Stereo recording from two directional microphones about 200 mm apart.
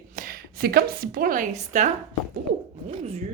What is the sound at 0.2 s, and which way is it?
A woman's voice, 50° right (ahead or behind).